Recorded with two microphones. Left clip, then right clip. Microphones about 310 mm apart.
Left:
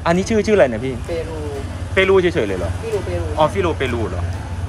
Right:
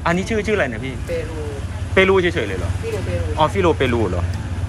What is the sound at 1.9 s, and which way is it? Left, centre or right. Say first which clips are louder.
Speech: left 1 dB; centre.